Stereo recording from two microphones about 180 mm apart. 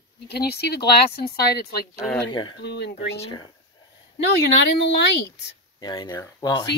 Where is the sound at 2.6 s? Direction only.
70° left (ahead or behind).